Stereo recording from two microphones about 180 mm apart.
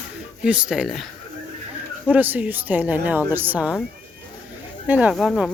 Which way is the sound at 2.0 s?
10° right (ahead or behind).